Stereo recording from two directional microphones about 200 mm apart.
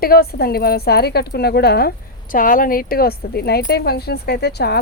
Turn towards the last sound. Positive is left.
turn(degrees=55)  # may be behind; listen again after turning